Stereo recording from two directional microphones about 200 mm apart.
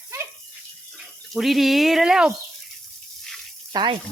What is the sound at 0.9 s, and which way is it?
Speech, centre (ahead or behind).